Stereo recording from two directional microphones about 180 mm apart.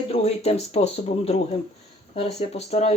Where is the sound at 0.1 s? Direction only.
35° left (ahead or behind).